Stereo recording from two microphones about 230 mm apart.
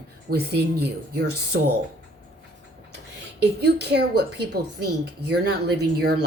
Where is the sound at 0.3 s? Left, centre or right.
Right.